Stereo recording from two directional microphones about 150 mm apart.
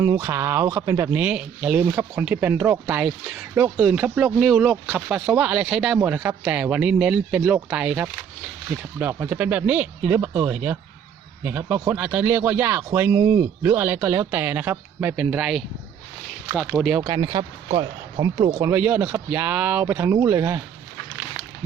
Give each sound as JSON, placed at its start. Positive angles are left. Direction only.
{"t": 0.0, "sound": "speech", "side_deg": -20}
{"t": 16.9, "sound": "speech", "side_deg": -15}
{"t": 17.2, "sound": "speech", "side_deg": -25}